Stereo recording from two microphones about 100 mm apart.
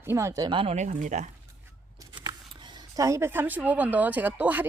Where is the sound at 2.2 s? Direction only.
45° right (ahead or behind).